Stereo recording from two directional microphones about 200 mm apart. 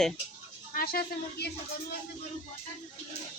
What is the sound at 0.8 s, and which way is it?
Speech, 50° left (ahead or behind).